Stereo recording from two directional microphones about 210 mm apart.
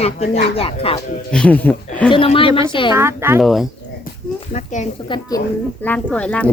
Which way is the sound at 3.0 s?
10° right (ahead or behind).